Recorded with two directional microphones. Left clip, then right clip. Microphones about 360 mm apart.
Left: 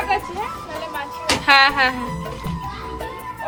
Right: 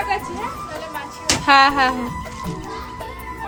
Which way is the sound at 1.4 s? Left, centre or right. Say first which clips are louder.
Right 1 dB; centre.